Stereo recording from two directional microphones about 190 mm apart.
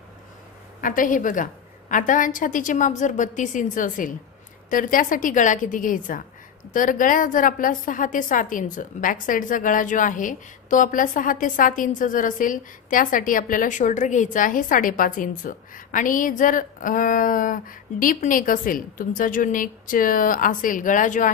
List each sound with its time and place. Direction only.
0.7 s a woman's voice: 45° left (ahead or behind)